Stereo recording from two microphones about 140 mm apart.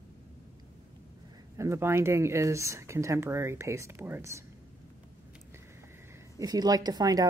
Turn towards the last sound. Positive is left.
turn(degrees=-25)  # may be behind; listen again after turning